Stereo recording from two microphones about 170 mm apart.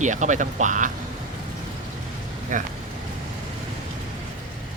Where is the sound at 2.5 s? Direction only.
50° right (ahead or behind).